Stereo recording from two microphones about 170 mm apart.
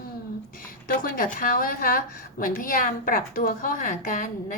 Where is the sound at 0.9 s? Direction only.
60° left (ahead or behind).